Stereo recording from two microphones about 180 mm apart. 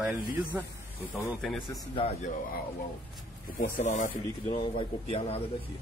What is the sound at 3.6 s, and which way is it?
Speech, 45° left (ahead or behind).